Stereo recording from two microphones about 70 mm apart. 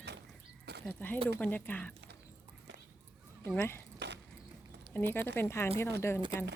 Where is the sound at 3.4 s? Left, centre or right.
Left.